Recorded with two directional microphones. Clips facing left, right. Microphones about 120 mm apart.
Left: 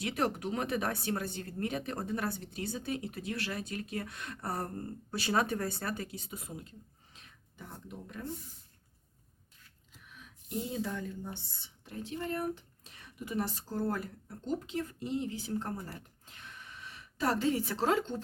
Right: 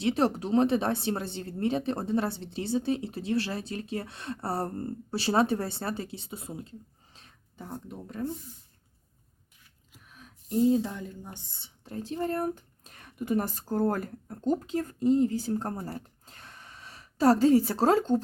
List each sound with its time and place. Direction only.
0.0 s speech: 30° right (ahead or behind)
10.1 s a sound: 40° right (ahead or behind)
10.8 s speech: 20° right (ahead or behind)
11.9 s speech: 35° right (ahead or behind)